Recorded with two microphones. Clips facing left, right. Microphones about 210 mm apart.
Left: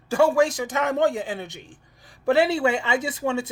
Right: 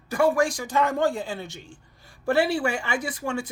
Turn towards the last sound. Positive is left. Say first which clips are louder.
# left 4 dB
turn(degrees=25)  # may be behind; listen again after turning